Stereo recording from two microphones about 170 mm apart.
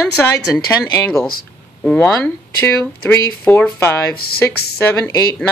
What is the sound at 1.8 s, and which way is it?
Speech, 5° left (ahead or behind).